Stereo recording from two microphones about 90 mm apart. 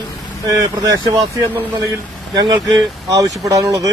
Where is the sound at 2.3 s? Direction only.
50° right (ahead or behind).